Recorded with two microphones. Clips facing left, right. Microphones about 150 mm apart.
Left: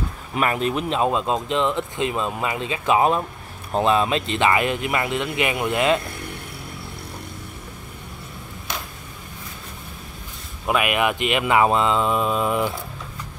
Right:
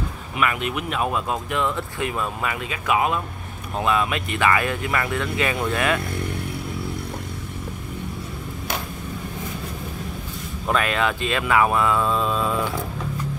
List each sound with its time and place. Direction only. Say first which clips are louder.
0.4 s speech: left 3 dB; 35° left (ahead or behind); by 5.9 s 20° left (ahead or behind)
10.7 s speech: left 1 dB; 15° left (ahead or behind)